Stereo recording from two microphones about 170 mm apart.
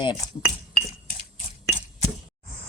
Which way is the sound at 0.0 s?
25° left (ahead or behind).